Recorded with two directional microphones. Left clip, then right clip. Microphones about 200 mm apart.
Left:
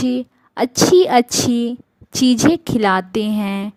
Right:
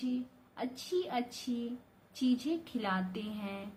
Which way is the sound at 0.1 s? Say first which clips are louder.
Left 17 dB; 55° left (ahead or behind).